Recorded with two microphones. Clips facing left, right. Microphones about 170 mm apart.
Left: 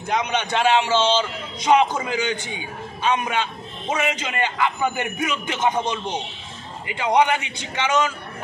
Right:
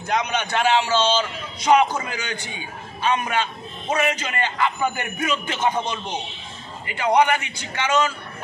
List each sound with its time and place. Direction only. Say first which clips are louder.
0.3 s a man's voice: left 2 dB; 20° left (ahead or behind)